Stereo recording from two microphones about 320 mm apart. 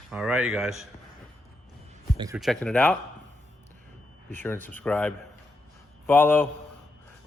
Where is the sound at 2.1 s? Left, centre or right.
Centre.